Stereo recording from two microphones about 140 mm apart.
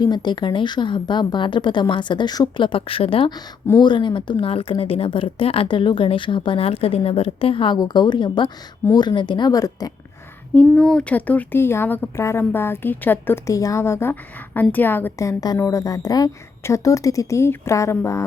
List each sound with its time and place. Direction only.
0.0 s speech: 30° left (ahead or behind)
3.3 s speech: 30° left (ahead or behind)
10.5 s speech: 10° left (ahead or behind)